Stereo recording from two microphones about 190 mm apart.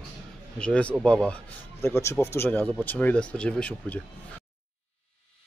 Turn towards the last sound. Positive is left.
turn(degrees=5)  # may be behind; listen again after turning